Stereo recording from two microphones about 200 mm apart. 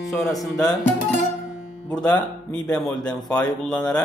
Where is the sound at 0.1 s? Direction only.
Centre (ahead or behind).